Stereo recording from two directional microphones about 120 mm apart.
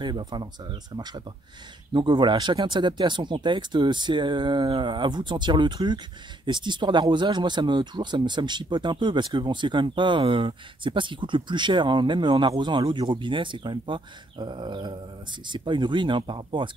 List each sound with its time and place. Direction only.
0.0 s speech: 35° right (ahead or behind)